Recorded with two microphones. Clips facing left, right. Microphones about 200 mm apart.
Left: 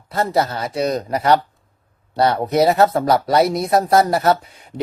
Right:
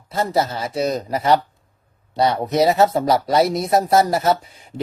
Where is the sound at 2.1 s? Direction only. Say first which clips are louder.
Left 1 dB; 25° right (ahead or behind).